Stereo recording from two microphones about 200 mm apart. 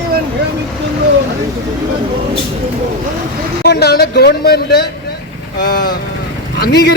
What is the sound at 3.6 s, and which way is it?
A man's voice, 55° left (ahead or behind).